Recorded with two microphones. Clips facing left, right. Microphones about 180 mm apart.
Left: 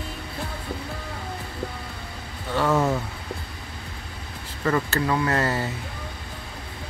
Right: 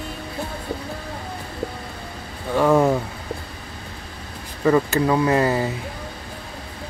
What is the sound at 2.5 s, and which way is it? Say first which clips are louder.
Speech: right 5 dB; 15° right (ahead or behind).